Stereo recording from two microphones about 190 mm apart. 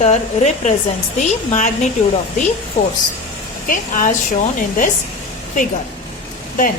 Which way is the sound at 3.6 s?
45° left (ahead or behind).